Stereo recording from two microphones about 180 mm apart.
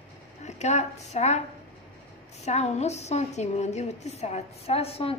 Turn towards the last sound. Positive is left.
turn(degrees=35)  # may be behind; listen again after turning